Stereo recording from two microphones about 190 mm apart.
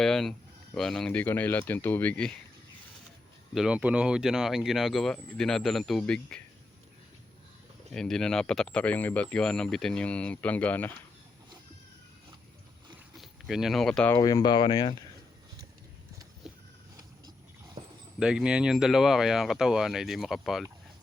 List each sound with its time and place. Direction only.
0.0 s speech: centre (ahead or behind)
3.5 s speech: 5° right (ahead or behind)
7.9 s speech: 5° left (ahead or behind)
13.1 s speech: centre (ahead or behind)
14.2 s speech: 20° left (ahead or behind)
18.2 s speech: 5° right (ahead or behind)